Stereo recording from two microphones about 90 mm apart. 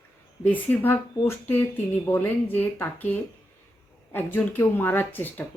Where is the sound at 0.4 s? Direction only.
20° left (ahead or behind).